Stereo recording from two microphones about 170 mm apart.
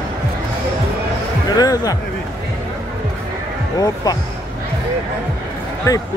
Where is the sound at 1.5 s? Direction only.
20° left (ahead or behind).